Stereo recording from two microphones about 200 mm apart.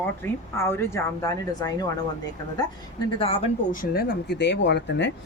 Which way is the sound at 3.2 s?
30° left (ahead or behind).